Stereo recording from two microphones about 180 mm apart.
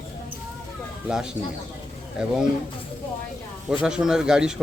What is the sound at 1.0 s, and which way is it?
Speech, 5° right (ahead or behind).